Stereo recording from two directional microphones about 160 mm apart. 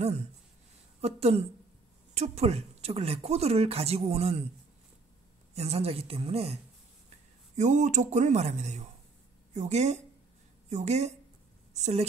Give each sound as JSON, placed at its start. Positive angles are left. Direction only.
{"t": 1.0, "sound": "speech", "side_deg": -40}
{"t": 5.5, "sound": "speech", "side_deg": -40}